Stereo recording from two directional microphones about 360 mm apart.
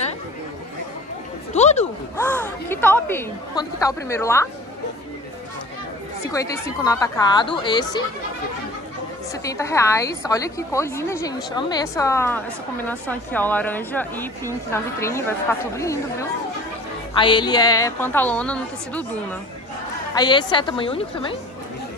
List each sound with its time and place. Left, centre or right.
1.5 s a sound: centre
2.1 s a woman's voice: centre
6.2 s a woman's voice: centre
9.4 s a woman's voice: centre
20.2 s a woman's voice: centre